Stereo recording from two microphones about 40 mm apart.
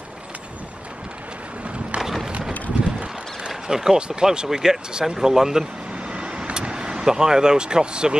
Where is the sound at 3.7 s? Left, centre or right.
Centre.